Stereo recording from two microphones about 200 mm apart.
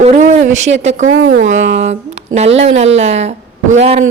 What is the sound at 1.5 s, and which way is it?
Speech, 65° right (ahead or behind).